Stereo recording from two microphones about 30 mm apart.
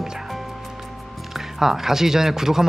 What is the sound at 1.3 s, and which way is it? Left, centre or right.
Speech, centre.